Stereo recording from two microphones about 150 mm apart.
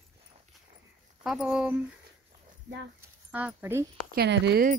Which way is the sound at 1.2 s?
5° right (ahead or behind).